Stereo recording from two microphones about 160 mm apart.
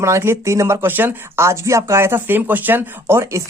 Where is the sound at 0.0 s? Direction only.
15° right (ahead or behind).